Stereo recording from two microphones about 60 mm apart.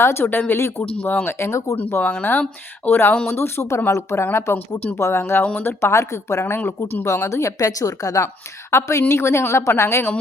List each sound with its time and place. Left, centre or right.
0.0 s speech: left
2.8 s speech: left
3.2 s speech: left
5.4 s speech: left
5.8 s speech: left
7.0 s speech: left
8.7 s speech: left